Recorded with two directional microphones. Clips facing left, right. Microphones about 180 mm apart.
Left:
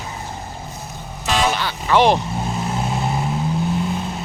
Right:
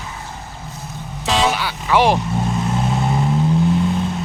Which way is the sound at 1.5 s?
10° right (ahead or behind).